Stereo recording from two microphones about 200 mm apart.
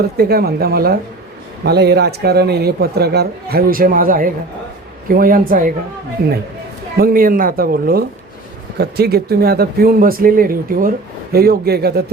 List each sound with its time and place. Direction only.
0.2 s speech: 50° right (ahead or behind)